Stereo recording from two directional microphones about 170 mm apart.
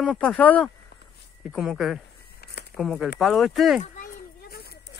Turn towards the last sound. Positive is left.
turn(degrees=65)  # may be behind; listen again after turning